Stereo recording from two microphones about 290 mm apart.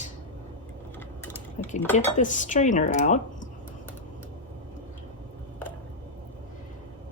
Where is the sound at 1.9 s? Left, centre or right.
Left.